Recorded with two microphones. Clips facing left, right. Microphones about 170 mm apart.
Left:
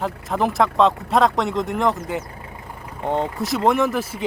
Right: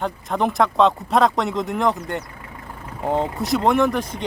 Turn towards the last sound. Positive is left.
turn(degrees=5)  # may be behind; listen again after turning